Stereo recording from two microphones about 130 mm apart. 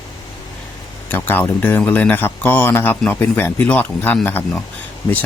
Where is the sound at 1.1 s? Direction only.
15° left (ahead or behind).